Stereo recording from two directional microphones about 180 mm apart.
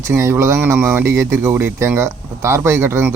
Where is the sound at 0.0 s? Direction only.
15° right (ahead or behind).